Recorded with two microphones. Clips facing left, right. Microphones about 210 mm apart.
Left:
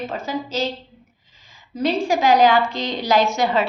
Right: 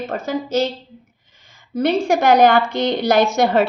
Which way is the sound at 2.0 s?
65° right (ahead or behind).